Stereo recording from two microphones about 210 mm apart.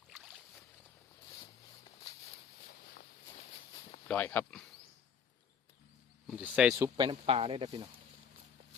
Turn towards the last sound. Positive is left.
turn(degrees=-25)  # may be behind; listen again after turning